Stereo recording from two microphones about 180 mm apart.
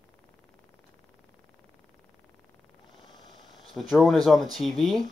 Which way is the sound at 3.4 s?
Centre (ahead or behind).